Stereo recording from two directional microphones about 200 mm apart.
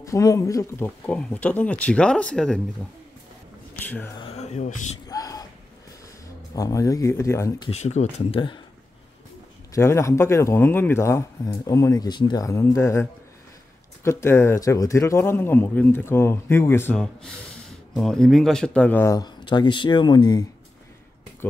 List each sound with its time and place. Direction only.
0.0 s speech: 15° left (ahead or behind)
4.2 s speech: 35° left (ahead or behind)
5.0 s a sound: 15° left (ahead or behind)
6.5 s speech: 15° left (ahead or behind)
7.7 s speech: 35° left (ahead or behind)
9.7 s speech: 15° left (ahead or behind)